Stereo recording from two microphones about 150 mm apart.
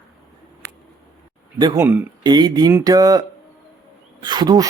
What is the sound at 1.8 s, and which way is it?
Speech, 15° right (ahead or behind).